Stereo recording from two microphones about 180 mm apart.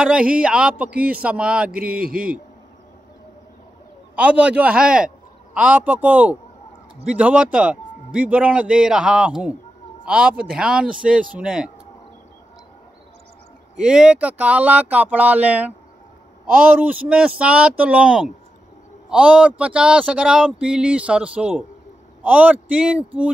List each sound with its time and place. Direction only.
0.0 s speech: 5° right (ahead or behind)
2.0 s a man's voice: 50° right (ahead or behind)
4.1 s a man's voice: 5° right (ahead or behind)
13.7 s speech: 5° right (ahead or behind)
16.8 s speech: 5° right (ahead or behind)